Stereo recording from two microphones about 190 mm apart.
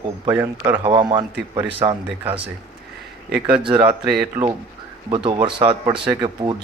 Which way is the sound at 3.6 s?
25° right (ahead or behind).